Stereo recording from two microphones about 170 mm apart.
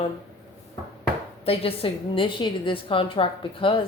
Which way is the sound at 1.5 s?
35° left (ahead or behind).